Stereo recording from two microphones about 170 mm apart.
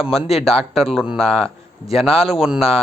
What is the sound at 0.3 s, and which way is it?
A man's voice, centre (ahead or behind).